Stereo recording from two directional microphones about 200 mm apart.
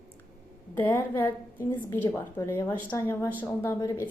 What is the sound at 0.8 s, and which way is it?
A woman's voice, 10° left (ahead or behind).